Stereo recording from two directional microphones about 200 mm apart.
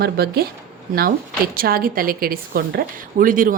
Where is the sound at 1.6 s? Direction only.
45° right (ahead or behind).